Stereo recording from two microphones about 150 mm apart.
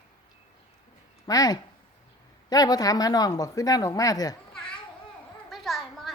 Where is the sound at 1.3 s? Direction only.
25° left (ahead or behind).